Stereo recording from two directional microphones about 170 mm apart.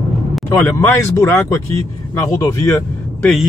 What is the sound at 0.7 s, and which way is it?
Speech, 15° left (ahead or behind).